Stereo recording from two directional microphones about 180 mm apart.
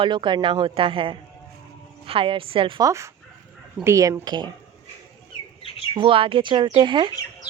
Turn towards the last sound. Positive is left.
turn(degrees=-25)  # may be behind; listen again after turning